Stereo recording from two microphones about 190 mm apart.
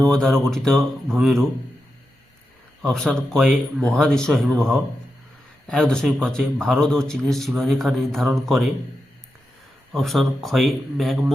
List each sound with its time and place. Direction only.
0.1 s speech: centre (ahead or behind)
2.8 s speech: 5° left (ahead or behind)
5.6 s speech: 5° left (ahead or behind)
9.9 s speech: centre (ahead or behind)